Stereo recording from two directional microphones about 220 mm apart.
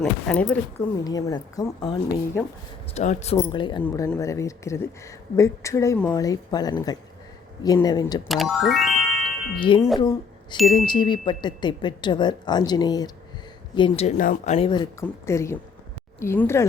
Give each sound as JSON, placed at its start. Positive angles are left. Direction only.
{"t": 0.0, "sound": "a woman's voice", "side_deg": 5}
{"t": 1.0, "sound": "a woman's voice", "side_deg": 15}
{"t": 2.9, "sound": "a man's voice", "side_deg": 30}
{"t": 3.3, "sound": "a woman's voice", "side_deg": 20}
{"t": 8.3, "sound": "speech", "side_deg": 0}
{"t": 9.6, "sound": "a woman's voice", "side_deg": 20}